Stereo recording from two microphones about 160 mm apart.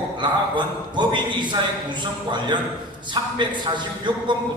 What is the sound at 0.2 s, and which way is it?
A man's voice, 30° right (ahead or behind).